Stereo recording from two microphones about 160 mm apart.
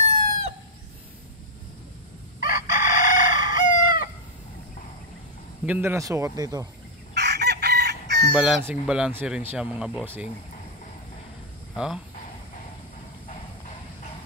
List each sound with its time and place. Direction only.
2.4 s chicken: 55° left (ahead or behind)
5.7 s speech: 15° right (ahead or behind)
7.2 s chicken: 90° right
8.4 s speech: 5° right (ahead or behind)
11.7 s speech: 5° right (ahead or behind)